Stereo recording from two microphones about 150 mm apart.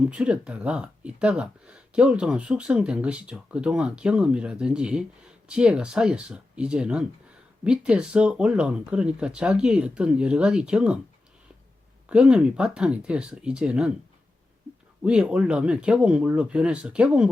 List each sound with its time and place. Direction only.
0.0 s speech: 5° right (ahead or behind)
12.0 s speech: 5° right (ahead or behind)
15.0 s speech: 5° right (ahead or behind)